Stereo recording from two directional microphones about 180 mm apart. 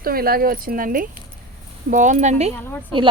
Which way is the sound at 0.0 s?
55° right (ahead or behind).